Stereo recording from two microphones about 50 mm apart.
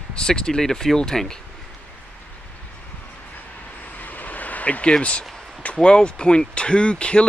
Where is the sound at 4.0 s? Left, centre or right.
Left.